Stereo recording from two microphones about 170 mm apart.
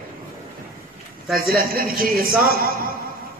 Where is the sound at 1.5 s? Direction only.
60° right (ahead or behind).